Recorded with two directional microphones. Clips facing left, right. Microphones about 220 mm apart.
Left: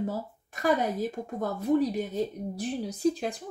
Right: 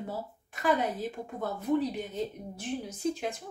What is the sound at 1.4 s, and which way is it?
Speech, 40° left (ahead or behind).